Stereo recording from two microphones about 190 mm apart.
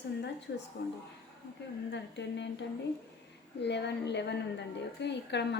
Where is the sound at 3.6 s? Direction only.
65° left (ahead or behind).